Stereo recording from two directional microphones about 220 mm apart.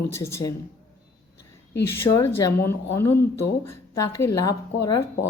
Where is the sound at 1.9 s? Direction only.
10° left (ahead or behind).